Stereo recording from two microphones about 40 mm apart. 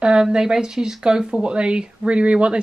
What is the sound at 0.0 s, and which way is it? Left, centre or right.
Speech, right.